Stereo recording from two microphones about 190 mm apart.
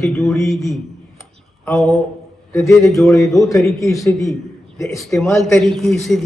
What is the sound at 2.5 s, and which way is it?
A man's voice, 10° left (ahead or behind).